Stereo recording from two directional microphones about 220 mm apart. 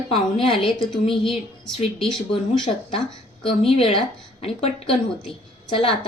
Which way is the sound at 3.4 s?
25° left (ahead or behind).